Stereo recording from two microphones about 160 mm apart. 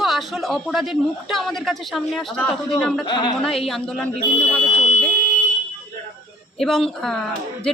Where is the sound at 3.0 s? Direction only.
30° left (ahead or behind).